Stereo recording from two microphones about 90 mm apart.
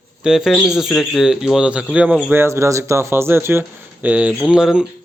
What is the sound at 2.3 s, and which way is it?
Speech, 30° right (ahead or behind).